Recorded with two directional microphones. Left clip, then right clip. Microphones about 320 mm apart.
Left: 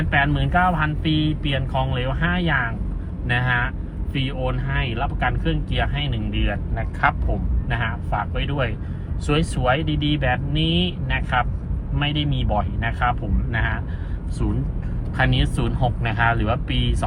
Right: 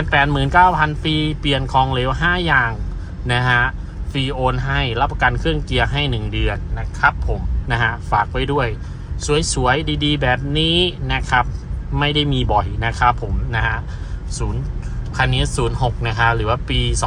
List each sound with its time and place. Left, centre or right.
0.1 s speech: centre
7.7 s speech: centre
15.1 s speech: centre